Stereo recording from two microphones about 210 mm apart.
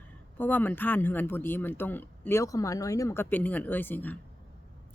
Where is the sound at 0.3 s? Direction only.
10° left (ahead or behind).